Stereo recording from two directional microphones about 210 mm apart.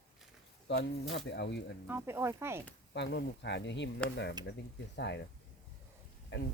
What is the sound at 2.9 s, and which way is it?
Speech, 55° left (ahead or behind).